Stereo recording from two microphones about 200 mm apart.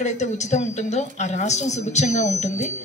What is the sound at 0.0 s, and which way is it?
A woman's voice, 35° left (ahead or behind).